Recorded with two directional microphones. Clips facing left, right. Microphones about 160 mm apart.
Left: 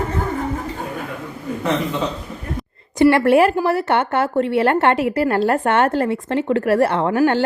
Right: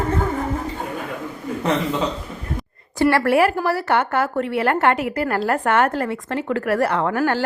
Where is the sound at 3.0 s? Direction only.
20° left (ahead or behind).